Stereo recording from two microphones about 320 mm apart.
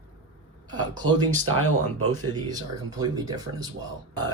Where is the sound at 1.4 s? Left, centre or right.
Right.